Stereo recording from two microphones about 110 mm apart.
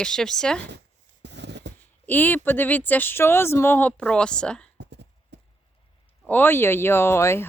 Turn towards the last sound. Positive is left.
turn(degrees=25)  # may be behind; listen again after turning